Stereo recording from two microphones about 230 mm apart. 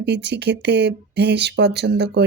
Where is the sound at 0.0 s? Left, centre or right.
Right.